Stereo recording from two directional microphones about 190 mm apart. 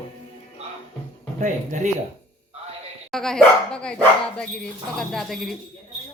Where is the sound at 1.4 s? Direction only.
40° right (ahead or behind).